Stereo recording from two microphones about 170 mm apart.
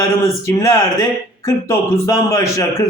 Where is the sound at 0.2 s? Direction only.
15° left (ahead or behind).